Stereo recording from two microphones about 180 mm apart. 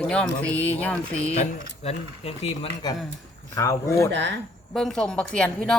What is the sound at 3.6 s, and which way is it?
Speech, 15° left (ahead or behind).